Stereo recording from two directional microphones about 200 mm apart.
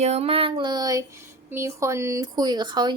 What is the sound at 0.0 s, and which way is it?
A woman's voice, 30° right (ahead or behind).